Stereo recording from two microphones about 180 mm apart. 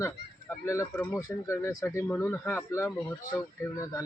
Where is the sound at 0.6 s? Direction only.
15° left (ahead or behind).